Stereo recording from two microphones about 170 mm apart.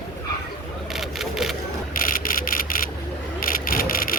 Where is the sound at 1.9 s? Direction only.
55° left (ahead or behind).